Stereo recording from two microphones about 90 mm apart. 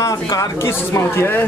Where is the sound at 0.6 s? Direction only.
30° left (ahead or behind).